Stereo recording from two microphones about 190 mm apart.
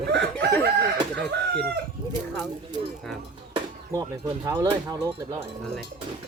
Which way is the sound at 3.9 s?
15° right (ahead or behind).